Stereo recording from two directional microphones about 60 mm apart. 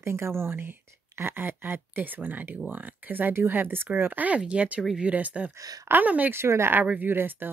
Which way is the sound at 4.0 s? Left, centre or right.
Right.